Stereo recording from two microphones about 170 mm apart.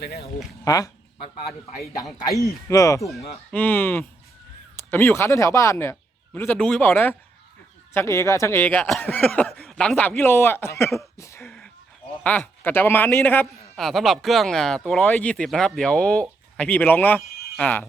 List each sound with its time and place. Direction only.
0.0 s speech: 70° left (ahead or behind)
0.6 s speech: 20° left (ahead or behind)
2.6 s speech: 20° left (ahead or behind)